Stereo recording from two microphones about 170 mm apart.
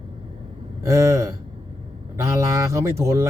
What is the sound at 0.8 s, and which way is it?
Speech, 20° right (ahead or behind).